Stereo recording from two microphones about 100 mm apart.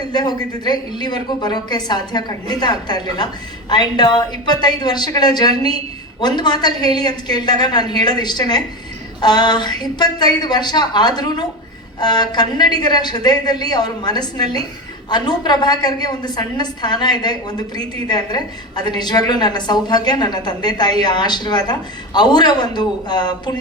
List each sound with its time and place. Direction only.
0.0 s a woman's voice: 45° left (ahead or behind)